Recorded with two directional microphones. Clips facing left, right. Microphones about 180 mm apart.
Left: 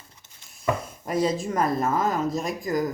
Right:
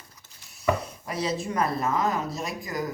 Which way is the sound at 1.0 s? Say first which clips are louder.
Left 6 dB; 45° left (ahead or behind).